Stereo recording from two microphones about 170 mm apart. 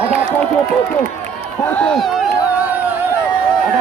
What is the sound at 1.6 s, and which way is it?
Speech, 5° left (ahead or behind).